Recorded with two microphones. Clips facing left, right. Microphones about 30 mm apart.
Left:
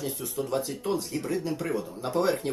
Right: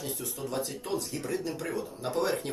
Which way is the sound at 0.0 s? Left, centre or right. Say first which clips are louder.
Left 4 dB; centre.